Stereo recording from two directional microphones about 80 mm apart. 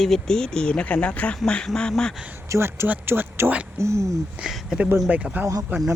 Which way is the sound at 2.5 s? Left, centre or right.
Right.